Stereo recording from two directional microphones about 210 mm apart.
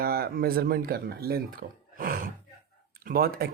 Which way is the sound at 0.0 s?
45° right (ahead or behind).